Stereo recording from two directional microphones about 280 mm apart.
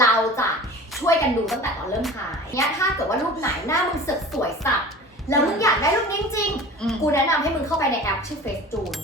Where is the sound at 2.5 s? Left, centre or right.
Centre.